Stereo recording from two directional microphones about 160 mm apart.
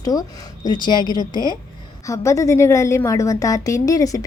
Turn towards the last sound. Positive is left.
turn(degrees=20)  # may be behind; listen again after turning